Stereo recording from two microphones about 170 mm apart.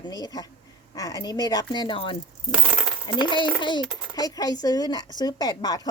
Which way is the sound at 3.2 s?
25° left (ahead or behind).